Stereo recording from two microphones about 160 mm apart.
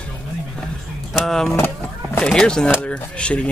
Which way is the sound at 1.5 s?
15° left (ahead or behind).